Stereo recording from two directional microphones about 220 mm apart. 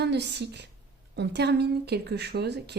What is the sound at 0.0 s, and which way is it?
A woman's voice, 50° right (ahead or behind).